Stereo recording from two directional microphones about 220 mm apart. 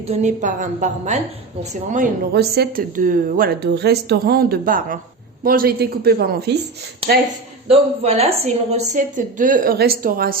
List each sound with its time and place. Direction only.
0.1 s a woman's voice: 30° right (ahead or behind)
2.3 s speech: 45° right (ahead or behind)
7.7 s a woman's voice: 25° right (ahead or behind)